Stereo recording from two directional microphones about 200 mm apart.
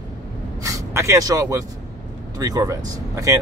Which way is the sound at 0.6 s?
15° right (ahead or behind).